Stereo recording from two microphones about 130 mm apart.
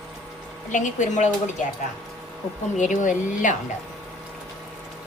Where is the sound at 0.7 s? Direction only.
70° left (ahead or behind).